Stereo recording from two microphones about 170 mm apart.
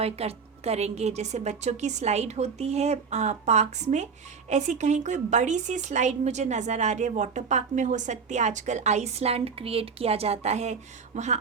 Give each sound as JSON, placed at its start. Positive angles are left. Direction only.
{"t": 0.0, "sound": "a woman's voice", "side_deg": -35}